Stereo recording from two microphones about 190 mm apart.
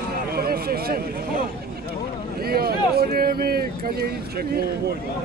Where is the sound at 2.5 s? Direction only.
55° right (ahead or behind).